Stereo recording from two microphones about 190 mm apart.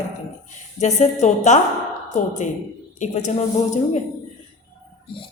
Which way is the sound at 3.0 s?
40° left (ahead or behind).